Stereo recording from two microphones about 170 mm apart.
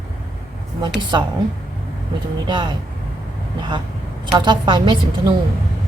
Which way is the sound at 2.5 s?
25° right (ahead or behind).